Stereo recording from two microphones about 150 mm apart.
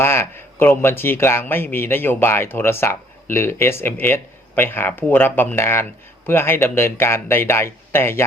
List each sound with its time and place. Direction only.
0.0 s speech: 15° left (ahead or behind)